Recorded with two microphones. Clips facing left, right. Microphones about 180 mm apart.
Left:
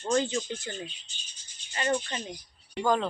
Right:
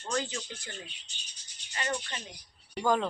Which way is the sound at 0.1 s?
30° left (ahead or behind).